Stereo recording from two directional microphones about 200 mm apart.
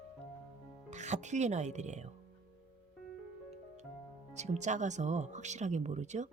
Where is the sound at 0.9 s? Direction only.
35° right (ahead or behind).